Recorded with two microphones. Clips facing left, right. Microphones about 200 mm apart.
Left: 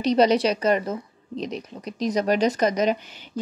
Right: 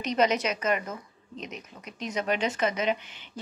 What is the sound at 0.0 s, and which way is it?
Speech, 35° left (ahead or behind).